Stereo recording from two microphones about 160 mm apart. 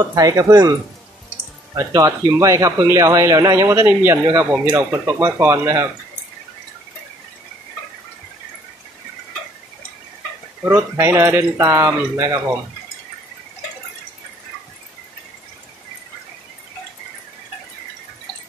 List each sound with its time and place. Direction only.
0.0 s speech: 20° right (ahead or behind)
1.8 s speech: 20° right (ahead or behind)
10.6 s speech: 15° right (ahead or behind)